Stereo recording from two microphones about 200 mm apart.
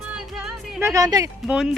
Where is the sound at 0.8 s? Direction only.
15° right (ahead or behind).